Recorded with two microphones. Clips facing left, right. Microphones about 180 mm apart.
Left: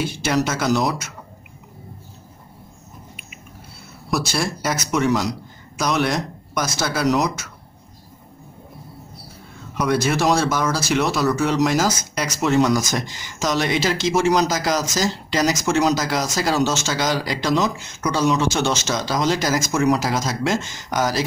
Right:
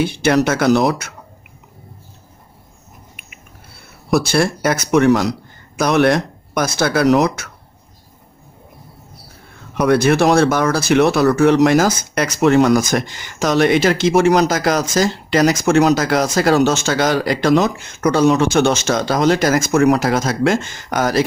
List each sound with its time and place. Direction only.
0.0 s speech: 60° right (ahead or behind)
4.1 s speech: 60° right (ahead or behind)
9.8 s speech: 60° right (ahead or behind)